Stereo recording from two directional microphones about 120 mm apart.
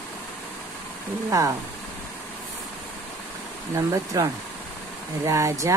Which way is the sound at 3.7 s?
30° right (ahead or behind).